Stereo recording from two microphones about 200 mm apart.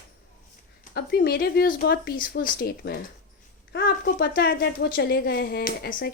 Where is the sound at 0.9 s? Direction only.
50° left (ahead or behind).